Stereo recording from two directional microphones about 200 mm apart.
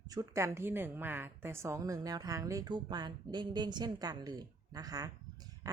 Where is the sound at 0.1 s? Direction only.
15° right (ahead or behind).